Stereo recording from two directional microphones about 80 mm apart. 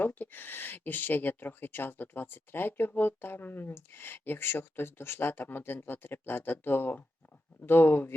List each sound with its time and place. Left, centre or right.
0.0 s speech: left